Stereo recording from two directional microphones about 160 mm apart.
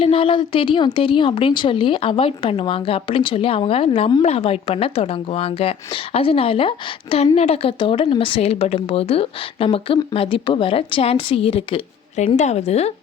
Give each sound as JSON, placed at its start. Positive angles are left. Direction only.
{"t": 0.0, "sound": "speech", "side_deg": 35}